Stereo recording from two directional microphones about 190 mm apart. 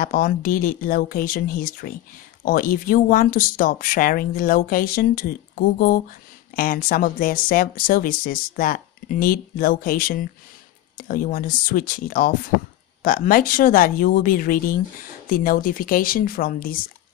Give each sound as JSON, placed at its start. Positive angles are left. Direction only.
{"t": 0.0, "sound": "speech", "side_deg": 45}
{"t": 6.5, "sound": "speech", "side_deg": 50}